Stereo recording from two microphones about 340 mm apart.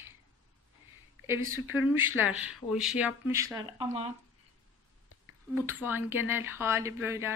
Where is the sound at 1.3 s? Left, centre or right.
Centre.